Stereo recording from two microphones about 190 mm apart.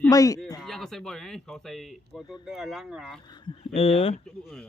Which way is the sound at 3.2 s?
25° left (ahead or behind).